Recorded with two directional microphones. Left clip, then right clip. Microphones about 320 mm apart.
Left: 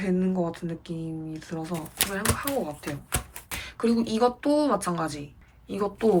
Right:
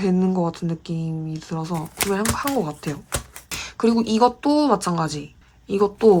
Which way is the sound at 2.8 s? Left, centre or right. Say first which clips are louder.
Right 4 dB; centre.